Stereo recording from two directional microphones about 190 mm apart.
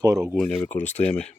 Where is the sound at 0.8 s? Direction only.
35° left (ahead or behind).